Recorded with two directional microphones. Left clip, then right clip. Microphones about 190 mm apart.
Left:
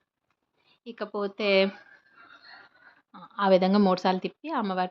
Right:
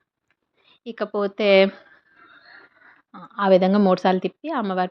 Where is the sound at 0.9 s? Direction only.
25° right (ahead or behind).